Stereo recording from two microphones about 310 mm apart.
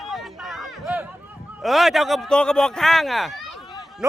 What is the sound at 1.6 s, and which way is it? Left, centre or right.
Speech, centre.